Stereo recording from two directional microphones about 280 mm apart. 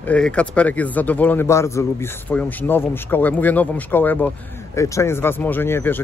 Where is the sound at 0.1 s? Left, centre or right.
Centre.